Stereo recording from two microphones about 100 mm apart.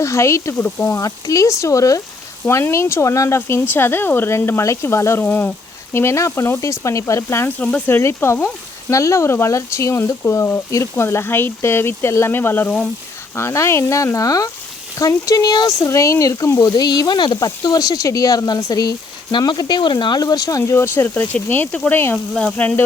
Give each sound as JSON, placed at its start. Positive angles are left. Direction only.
{"t": 0.0, "sound": "speech", "side_deg": 30}
{"t": 22.4, "sound": "sizzle", "side_deg": 10}